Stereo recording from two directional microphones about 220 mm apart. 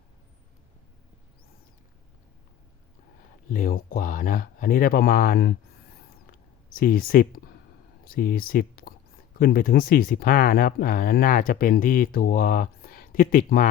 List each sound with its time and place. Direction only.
3.5 s speech: 40° left (ahead or behind)
6.2 s a sound: 40° left (ahead or behind)
8.0 s speech: 40° left (ahead or behind)